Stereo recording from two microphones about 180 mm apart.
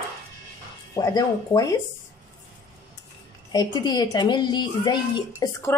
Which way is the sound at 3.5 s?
25° left (ahead or behind).